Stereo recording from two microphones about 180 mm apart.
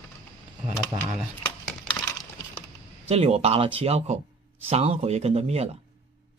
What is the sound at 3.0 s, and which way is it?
Speech, 35° right (ahead or behind).